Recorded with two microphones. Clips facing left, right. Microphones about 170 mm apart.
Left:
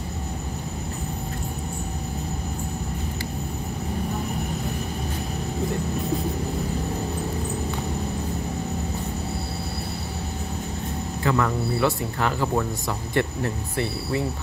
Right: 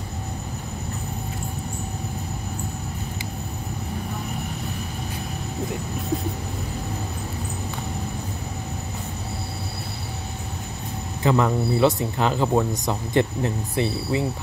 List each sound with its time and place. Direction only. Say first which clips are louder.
11.2 s speech: right 3 dB; 20° right (ahead or behind)